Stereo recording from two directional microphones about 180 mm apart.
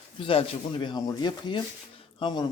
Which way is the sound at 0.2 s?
30° left (ahead or behind).